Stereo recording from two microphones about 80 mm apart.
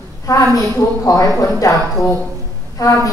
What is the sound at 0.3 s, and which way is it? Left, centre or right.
A woman's voice, left.